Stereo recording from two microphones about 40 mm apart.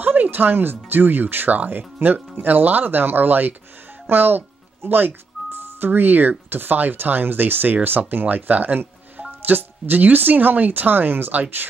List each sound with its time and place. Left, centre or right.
0.0 s speech: right
4.1 s music: right
5.9 s speech: right